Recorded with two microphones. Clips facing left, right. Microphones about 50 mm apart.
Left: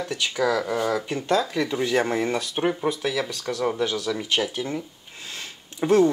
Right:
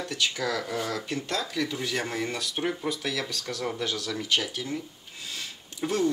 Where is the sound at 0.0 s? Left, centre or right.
Centre.